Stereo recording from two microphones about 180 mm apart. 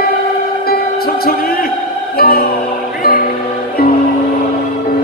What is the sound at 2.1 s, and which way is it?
Music, 55° left (ahead or behind).